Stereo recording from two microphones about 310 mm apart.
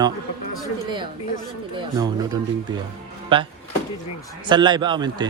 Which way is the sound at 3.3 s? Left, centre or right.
Centre.